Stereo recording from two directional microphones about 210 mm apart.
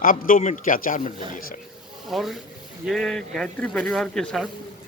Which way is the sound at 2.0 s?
Centre (ahead or behind).